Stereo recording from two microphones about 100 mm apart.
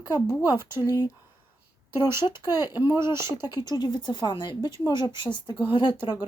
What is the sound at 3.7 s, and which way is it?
Speech, 45° left (ahead or behind).